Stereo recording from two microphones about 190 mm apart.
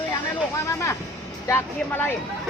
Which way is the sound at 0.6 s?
15° left (ahead or behind).